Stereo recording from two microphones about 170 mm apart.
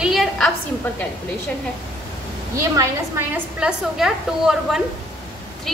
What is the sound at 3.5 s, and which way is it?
A woman's voice, 5° right (ahead or behind).